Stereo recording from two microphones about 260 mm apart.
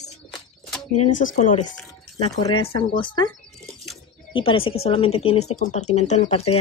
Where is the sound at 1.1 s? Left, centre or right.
Left.